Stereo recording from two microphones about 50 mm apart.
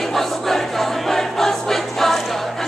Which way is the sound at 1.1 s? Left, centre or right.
Centre.